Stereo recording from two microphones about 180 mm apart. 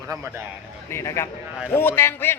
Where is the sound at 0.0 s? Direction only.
15° right (ahead or behind).